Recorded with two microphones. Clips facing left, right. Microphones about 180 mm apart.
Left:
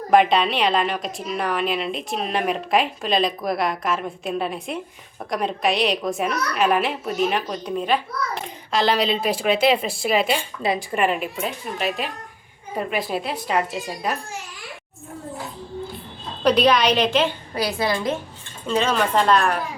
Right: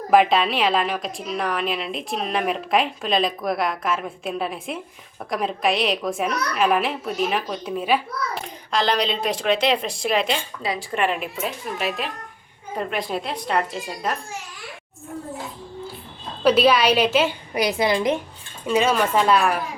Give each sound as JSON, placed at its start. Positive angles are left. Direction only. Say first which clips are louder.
{"t": 0.1, "sound": "a woman's voice", "louder": "even", "side_deg": 0}
{"t": 10.6, "sound": "speech", "louder": "left 4 dB", "side_deg": 25}
{"t": 10.9, "sound": "a woman's voice", "louder": "left 2 dB", "side_deg": 0}
{"t": 16.4, "sound": "a woman's voice", "louder": "right 1 dB", "side_deg": -5}